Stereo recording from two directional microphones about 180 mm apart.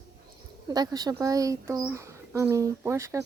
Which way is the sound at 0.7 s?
20° right (ahead or behind).